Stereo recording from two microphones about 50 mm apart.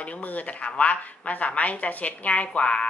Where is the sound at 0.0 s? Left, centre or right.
Left.